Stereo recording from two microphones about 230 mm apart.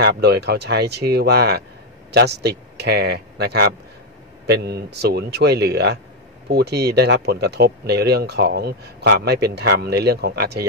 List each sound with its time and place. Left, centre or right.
0.0 s speech: right